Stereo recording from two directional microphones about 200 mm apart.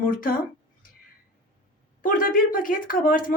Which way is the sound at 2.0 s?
45° left (ahead or behind).